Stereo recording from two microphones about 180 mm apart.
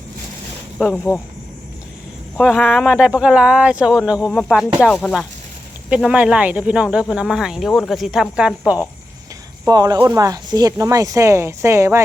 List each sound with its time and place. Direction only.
0.8 s speech: 5° left (ahead or behind)
2.4 s speech: centre (ahead or behind)
9.6 s speech: 20° right (ahead or behind)